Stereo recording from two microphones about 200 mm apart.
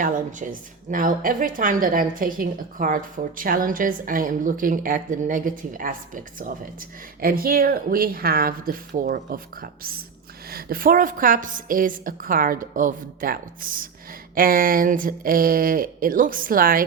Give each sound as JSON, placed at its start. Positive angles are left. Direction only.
{"t": 0.0, "sound": "a woman's voice", "side_deg": -40}